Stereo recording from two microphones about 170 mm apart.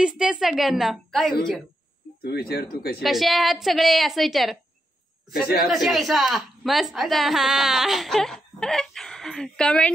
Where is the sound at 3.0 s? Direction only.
Centre (ahead or behind).